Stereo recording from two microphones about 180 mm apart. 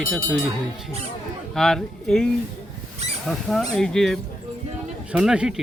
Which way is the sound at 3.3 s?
5° right (ahead or behind).